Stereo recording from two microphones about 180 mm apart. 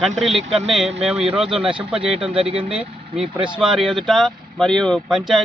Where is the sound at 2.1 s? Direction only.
30° right (ahead or behind).